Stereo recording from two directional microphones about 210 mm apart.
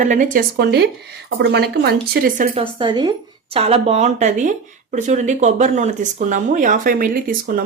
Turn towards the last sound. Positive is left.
turn(degrees=-40)  # may be behind; listen again after turning